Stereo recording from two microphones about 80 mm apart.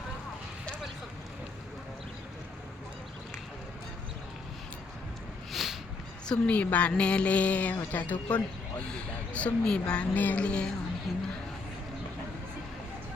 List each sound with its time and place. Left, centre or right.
5.5 s a sound: centre
6.2 s speech: centre
11.1 s speech: centre